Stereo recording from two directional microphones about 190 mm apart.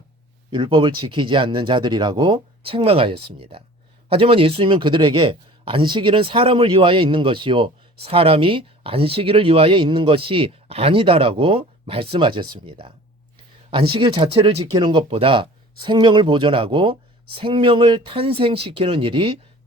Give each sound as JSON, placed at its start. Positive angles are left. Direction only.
{"t": 0.5, "sound": "speech", "side_deg": -25}
{"t": 13.9, "sound": "speech", "side_deg": -25}